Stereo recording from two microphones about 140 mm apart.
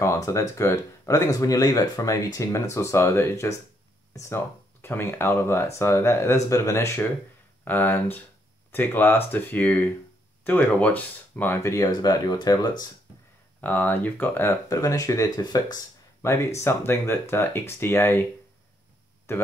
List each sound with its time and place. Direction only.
0.0 s speech: 20° left (ahead or behind)
13.6 s speech: 10° left (ahead or behind)
19.3 s speech: 15° left (ahead or behind)